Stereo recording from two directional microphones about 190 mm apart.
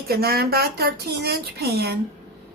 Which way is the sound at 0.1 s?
55° right (ahead or behind).